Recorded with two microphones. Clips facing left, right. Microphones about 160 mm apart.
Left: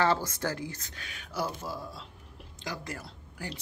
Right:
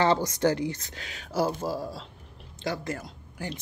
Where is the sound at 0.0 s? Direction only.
20° right (ahead or behind); by 2.0 s 35° right (ahead or behind).